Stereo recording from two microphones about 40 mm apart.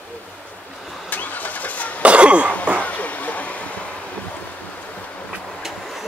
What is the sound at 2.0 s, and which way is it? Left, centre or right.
Throat clearing, right.